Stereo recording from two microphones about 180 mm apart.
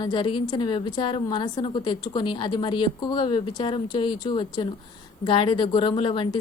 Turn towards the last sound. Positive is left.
turn(degrees=25)  # may be behind; listen again after turning